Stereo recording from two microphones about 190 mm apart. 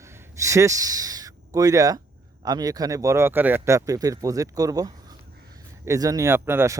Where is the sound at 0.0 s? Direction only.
15° right (ahead or behind).